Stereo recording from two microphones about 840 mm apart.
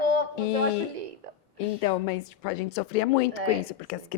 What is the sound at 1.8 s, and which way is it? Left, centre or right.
A woman's voice, left.